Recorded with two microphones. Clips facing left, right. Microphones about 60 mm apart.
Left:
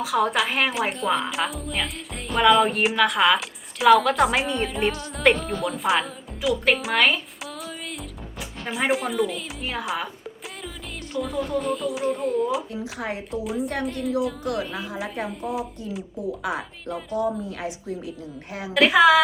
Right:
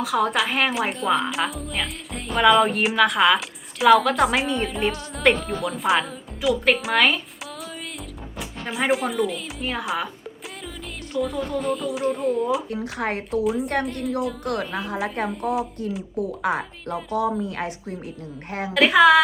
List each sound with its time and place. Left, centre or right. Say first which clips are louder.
0.0 s a woman's voice: even; centre
11.1 s a woman's voice: right 1 dB; centre
12.7 s speech: right 4 dB; right
13.4 s a woman's voice: right 4 dB; centre
14.4 s a woman's voice: right 1 dB; right
16.4 s speech: right 5 dB; right
16.8 s a woman's voice: right 2 dB; centre
17.2 s a woman's voice: right 2 dB; right
18.7 s a woman's voice: right 1 dB; centre